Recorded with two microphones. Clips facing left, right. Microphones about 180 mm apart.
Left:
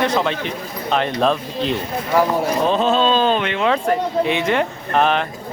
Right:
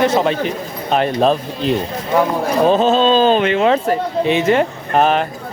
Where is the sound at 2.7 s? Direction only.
35° right (ahead or behind).